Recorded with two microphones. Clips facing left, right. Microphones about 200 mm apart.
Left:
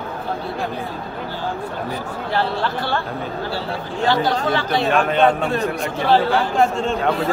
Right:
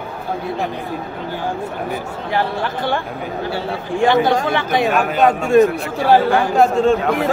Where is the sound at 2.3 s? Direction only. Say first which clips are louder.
Right 1 dB; 15° right (ahead or behind).